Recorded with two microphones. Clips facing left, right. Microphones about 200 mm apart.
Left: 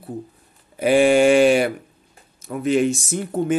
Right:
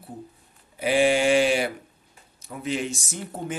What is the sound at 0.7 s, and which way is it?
Speech, 50° left (ahead or behind).